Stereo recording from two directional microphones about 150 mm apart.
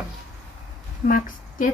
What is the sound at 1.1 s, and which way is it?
Speech, 60° left (ahead or behind).